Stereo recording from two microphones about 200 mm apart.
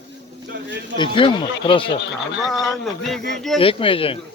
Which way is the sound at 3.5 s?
25° left (ahead or behind).